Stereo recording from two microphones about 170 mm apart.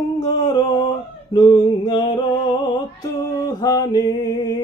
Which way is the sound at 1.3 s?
25° left (ahead or behind).